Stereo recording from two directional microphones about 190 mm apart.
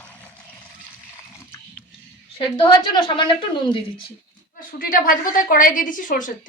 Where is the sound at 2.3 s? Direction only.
25° left (ahead or behind).